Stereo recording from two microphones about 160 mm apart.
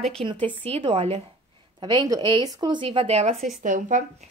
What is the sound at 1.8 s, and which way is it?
Speech, 25° right (ahead or behind).